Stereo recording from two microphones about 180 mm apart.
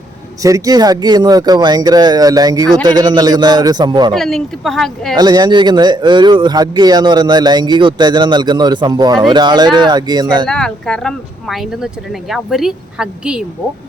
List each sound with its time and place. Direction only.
0.4 s speech: 20° right (ahead or behind)
4.1 s speech: centre (ahead or behind)
5.1 s speech: 20° right (ahead or behind)
10.4 s speech: 5° left (ahead or behind)